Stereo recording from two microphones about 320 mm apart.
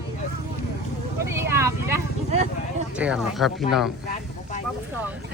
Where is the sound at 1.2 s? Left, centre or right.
Centre.